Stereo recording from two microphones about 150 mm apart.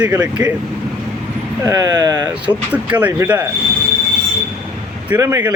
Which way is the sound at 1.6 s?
25° right (ahead or behind).